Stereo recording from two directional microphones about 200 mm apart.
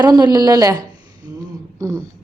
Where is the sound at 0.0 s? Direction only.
20° right (ahead or behind).